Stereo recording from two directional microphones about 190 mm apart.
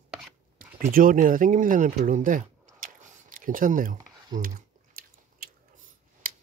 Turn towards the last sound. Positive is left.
turn(degrees=-50)  # may be behind; listen again after turning